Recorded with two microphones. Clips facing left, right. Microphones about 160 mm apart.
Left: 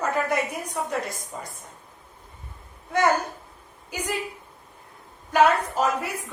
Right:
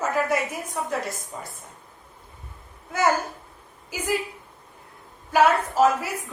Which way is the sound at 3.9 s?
5° right (ahead or behind).